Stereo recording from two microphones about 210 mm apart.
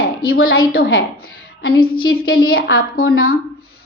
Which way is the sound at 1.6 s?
45° left (ahead or behind).